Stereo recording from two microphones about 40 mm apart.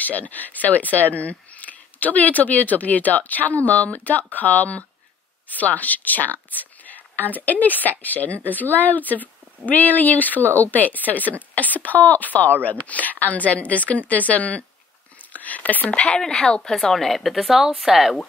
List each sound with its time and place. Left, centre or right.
0.0 s a woman's voice: left
15.3 s a sound: left
15.9 s speech: left
16.2 s a woman's voice: centre
16.9 s speech: centre